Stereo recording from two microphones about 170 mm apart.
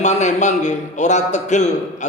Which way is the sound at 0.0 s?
45° left (ahead or behind).